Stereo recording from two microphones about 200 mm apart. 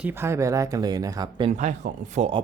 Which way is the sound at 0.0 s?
10° right (ahead or behind).